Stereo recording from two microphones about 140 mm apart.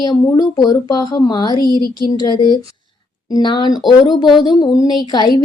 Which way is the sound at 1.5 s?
30° right (ahead or behind).